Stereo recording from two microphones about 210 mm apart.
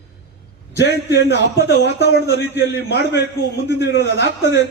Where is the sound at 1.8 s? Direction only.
55° left (ahead or behind).